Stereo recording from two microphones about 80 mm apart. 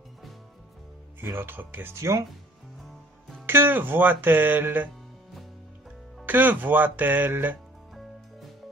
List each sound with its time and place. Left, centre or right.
1.2 s speech: right
3.4 s speech: right
6.2 s speech: right